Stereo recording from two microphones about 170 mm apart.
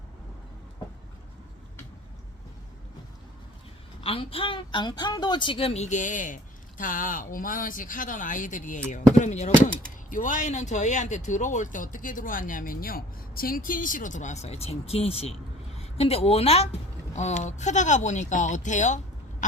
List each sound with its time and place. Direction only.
4.0 s speech: 35° left (ahead or behind)